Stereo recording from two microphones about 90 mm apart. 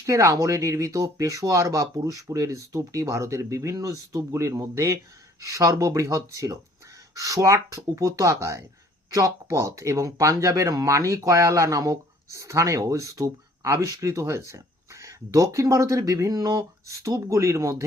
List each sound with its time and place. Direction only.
0.0 s speech: 35° right (ahead or behind)